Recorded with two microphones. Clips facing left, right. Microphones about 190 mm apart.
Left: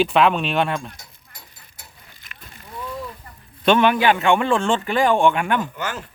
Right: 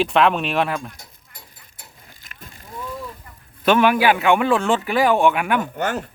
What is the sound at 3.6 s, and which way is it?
Speech, 5° right (ahead or behind).